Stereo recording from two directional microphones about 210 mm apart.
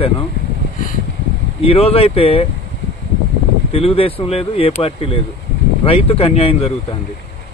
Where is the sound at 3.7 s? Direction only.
25° left (ahead or behind).